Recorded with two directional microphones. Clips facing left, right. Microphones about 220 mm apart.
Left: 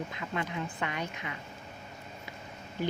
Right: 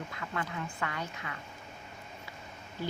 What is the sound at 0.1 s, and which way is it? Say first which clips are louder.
Speech: left 2 dB; 20° left (ahead or behind).